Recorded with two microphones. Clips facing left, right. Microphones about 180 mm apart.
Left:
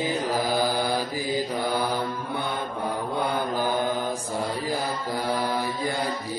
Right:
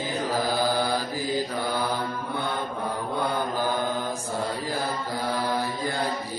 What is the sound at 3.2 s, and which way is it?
Mantra, 15° left (ahead or behind).